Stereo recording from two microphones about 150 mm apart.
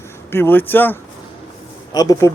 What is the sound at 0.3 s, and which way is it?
Speech, 15° left (ahead or behind).